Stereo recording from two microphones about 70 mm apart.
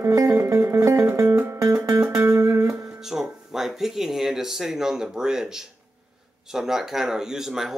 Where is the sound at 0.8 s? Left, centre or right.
Right.